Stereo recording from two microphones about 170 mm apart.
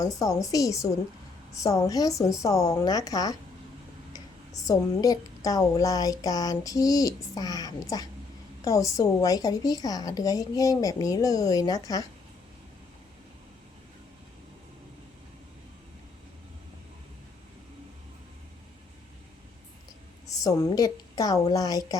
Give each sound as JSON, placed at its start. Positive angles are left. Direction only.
{"t": 0.0, "sound": "speech", "side_deg": 20}
{"t": 20.2, "sound": "a woman's voice", "side_deg": 20}